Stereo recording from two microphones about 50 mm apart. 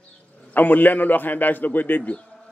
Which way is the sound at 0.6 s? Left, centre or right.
Left.